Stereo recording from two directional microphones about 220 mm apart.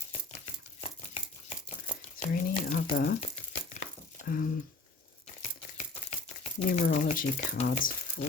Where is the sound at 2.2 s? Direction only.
40° left (ahead or behind).